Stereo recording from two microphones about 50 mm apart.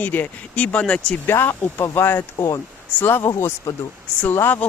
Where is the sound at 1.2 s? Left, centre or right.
Left.